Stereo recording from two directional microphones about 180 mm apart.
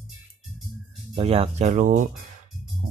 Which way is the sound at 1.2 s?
35° right (ahead or behind).